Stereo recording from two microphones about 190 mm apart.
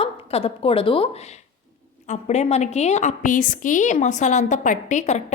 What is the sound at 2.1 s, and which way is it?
A woman's voice, 35° left (ahead or behind).